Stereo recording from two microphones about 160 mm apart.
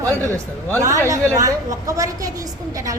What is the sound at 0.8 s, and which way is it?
A woman's voice, 20° right (ahead or behind).